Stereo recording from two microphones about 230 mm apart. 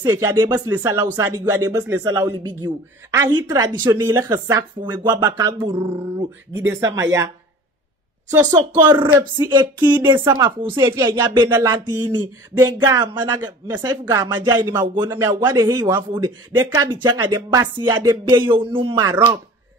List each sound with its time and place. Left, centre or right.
0.0 s speech: centre
6.5 s speech: centre
8.3 s speech: centre
9.4 s a sound: centre
9.9 s speech: centre
18.8 s a sound: centre